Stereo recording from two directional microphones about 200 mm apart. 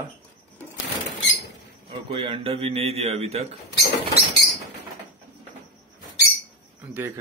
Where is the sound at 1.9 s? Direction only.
25° right (ahead or behind).